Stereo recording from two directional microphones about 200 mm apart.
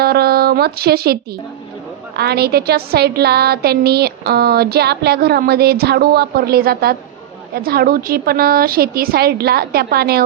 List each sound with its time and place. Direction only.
0.0 s speech: 50° right (ahead or behind)